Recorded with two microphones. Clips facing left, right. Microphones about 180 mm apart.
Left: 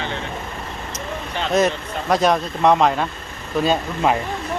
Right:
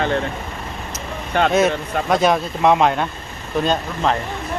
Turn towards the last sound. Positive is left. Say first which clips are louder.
# left 1 dB
turn(degrees=10)  # may be behind; listen again after turning